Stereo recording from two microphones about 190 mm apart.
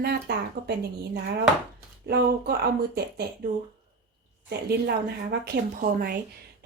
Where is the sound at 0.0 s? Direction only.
55° right (ahead or behind).